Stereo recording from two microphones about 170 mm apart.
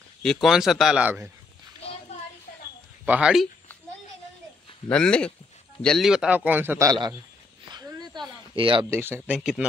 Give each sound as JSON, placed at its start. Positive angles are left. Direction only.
{"t": 0.2, "sound": "speech", "side_deg": 0}
{"t": 3.1, "sound": "speech", "side_deg": -5}
{"t": 4.8, "sound": "a man's voice", "side_deg": 5}
{"t": 7.7, "sound": "a sound", "side_deg": -25}
{"t": 8.9, "sound": "a man's voice", "side_deg": -10}